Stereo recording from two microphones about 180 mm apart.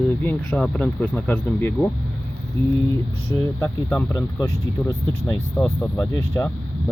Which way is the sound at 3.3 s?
10° left (ahead or behind).